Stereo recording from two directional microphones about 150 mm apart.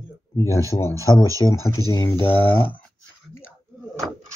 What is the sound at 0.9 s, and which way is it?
Speech, 20° right (ahead or behind).